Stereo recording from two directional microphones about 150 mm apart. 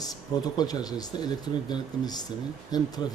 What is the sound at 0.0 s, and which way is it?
Speech, 25° left (ahead or behind).